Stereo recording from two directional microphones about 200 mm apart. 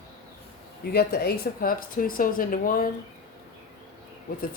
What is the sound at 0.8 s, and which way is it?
Speech, 50° left (ahead or behind).